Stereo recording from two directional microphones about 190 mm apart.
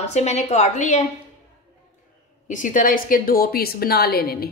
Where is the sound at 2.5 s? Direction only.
40° left (ahead or behind).